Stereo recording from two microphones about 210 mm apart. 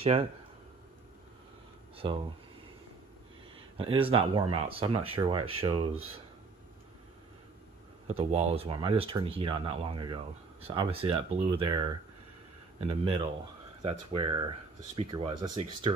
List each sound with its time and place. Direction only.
0.0 s speech: 30° right (ahead or behind)
2.0 s speech: 25° right (ahead or behind)
3.7 s speech: 25° right (ahead or behind)
8.1 s speech: 30° right (ahead or behind)
13.8 s speech: 25° right (ahead or behind)